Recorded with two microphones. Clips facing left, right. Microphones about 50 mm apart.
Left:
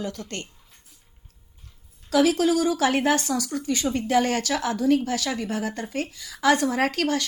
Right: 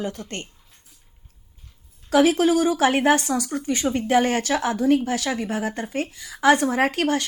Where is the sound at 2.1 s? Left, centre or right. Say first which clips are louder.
Right 3 dB; right.